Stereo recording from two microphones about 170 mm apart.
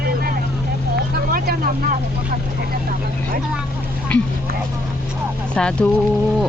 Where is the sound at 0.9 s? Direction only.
65° right (ahead or behind).